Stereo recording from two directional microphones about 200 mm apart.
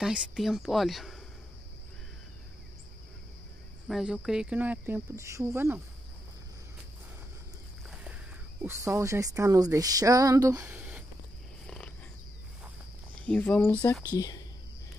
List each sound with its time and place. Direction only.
0.0 s a woman's voice: centre (ahead or behind)
3.8 s speech: centre (ahead or behind)
7.9 s a sound: 5° right (ahead or behind)
8.6 s speech: 15° right (ahead or behind)
11.6 s a sound: 5° left (ahead or behind)
13.3 s speech: 5° left (ahead or behind)
14.1 s speech: 20° left (ahead or behind)